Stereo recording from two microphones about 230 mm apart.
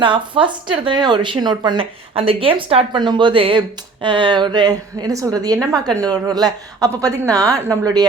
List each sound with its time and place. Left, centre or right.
0.0 s a woman's voice: right